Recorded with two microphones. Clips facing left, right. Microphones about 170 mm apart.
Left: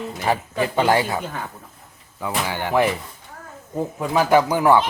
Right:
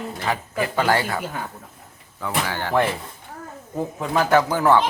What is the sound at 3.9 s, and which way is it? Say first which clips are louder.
Speech: left 2 dB; 10° left (ahead or behind).